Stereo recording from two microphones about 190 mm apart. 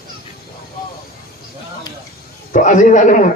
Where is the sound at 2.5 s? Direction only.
40° left (ahead or behind).